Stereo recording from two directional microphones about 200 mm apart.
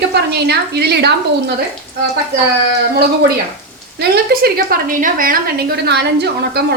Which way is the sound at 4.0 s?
50° right (ahead or behind).